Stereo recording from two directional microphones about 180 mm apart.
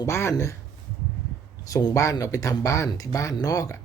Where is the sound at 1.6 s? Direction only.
20° left (ahead or behind).